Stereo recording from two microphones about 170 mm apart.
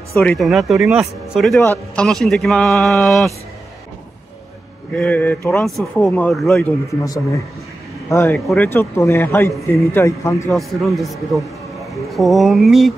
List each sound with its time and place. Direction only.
0.1 s speech: 5° left (ahead or behind)
1.6 s speech: 10° left (ahead or behind)
2.0 s speech: centre (ahead or behind)
4.9 s speech: 10° left (ahead or behind)
8.1 s speech: 15° left (ahead or behind)
10.5 s speech: centre (ahead or behind)